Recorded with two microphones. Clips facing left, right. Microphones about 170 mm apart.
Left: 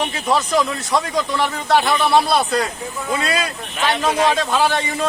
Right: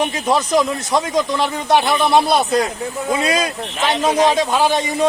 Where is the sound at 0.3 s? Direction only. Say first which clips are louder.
Right 1 dB; 20° right (ahead or behind).